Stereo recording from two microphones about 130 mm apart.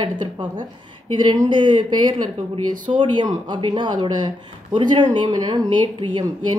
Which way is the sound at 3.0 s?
35° right (ahead or behind).